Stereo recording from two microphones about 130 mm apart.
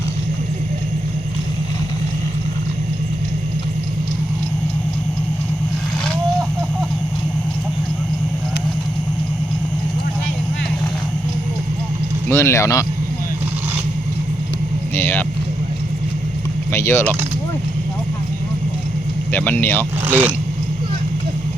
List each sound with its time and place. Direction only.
12.3 s speech: 20° left (ahead or behind)
14.9 s speech: 15° left (ahead or behind)
16.7 s speech: 20° left (ahead or behind)
19.3 s speech: 15° left (ahead or behind)
20.1 s speech: 15° right (ahead or behind)